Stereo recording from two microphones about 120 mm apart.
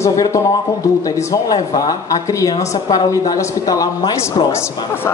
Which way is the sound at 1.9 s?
30° left (ahead or behind).